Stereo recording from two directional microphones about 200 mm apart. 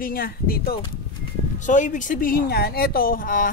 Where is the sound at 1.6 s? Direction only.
40° left (ahead or behind).